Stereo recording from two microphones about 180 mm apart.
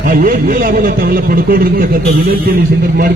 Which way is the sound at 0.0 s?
55° right (ahead or behind).